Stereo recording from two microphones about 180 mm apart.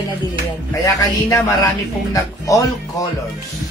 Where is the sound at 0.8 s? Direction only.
20° left (ahead or behind).